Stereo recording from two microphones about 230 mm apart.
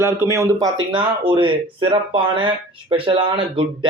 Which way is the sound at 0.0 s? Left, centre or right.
Centre.